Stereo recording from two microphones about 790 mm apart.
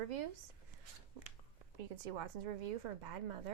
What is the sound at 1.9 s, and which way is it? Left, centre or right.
Speech, right.